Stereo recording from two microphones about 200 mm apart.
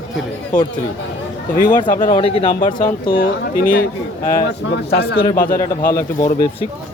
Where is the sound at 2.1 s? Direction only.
30° left (ahead or behind).